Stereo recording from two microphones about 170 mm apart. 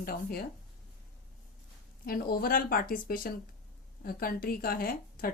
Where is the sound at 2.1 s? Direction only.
60° left (ahead or behind).